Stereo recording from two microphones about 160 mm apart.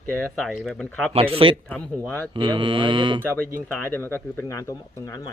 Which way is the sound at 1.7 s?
10° left (ahead or behind).